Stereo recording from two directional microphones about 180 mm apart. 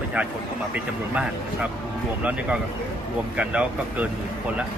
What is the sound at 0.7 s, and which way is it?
Speech, 5° right (ahead or behind).